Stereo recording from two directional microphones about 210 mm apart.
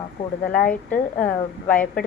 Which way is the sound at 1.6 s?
5° left (ahead or behind).